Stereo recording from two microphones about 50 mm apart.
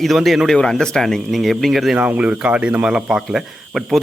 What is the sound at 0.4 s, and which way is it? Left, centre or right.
Speech, centre.